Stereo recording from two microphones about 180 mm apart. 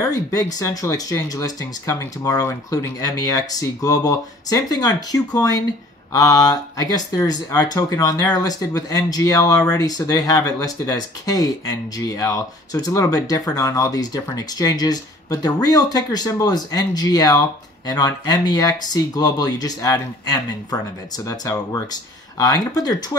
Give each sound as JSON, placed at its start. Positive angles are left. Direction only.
{"t": 0.0, "sound": "speech", "side_deg": 20}